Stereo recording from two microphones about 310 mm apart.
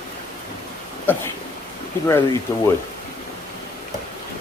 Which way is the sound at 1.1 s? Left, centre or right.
Centre.